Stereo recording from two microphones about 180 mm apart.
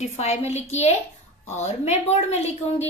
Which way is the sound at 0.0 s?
40° left (ahead or behind).